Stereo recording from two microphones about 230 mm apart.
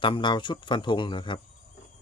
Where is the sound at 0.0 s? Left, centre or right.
Left.